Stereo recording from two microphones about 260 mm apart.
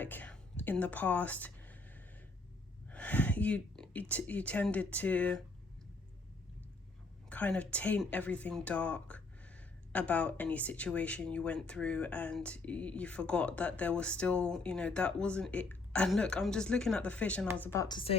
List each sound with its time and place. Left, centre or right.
0.0 s a sound: centre
2.9 s speech: centre
7.3 s speech: centre